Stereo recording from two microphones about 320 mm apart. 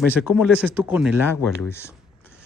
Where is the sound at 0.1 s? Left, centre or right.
Centre.